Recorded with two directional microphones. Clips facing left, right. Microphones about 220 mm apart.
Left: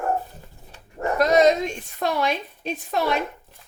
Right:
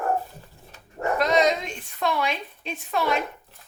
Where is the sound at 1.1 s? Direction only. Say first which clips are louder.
Left 5 dB; 40° left (ahead or behind).